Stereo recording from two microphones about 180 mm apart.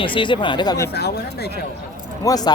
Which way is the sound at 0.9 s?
65° left (ahead or behind).